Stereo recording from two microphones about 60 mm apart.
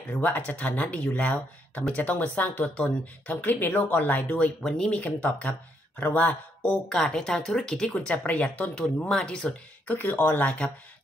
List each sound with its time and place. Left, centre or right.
0.1 s speech: left
4.6 s speech: centre
6.6 s speech: centre
9.8 s speech: left